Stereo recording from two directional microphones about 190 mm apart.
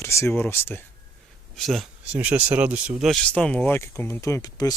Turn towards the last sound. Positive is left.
turn(degrees=20)  # may be behind; listen again after turning